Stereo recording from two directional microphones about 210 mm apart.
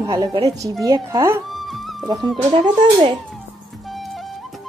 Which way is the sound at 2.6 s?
20° right (ahead or behind).